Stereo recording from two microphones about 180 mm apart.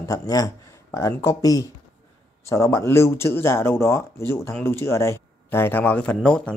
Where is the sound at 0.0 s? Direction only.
20° left (ahead or behind).